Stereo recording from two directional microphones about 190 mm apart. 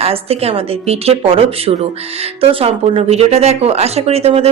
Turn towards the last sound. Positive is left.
turn(degrees=-30)  # may be behind; listen again after turning